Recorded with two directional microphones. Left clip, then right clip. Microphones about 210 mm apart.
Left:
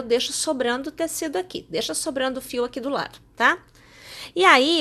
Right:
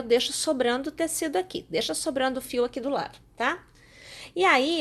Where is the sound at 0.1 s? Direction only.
Centre (ahead or behind).